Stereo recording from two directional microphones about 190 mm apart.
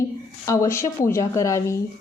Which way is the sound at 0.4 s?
15° left (ahead or behind).